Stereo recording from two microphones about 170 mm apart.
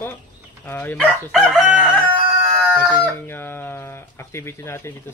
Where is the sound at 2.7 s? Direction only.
10° left (ahead or behind).